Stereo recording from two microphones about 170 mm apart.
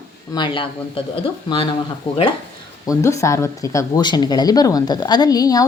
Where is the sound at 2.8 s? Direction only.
20° left (ahead or behind).